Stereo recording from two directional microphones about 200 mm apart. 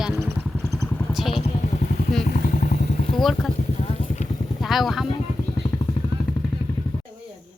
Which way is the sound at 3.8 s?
30° left (ahead or behind).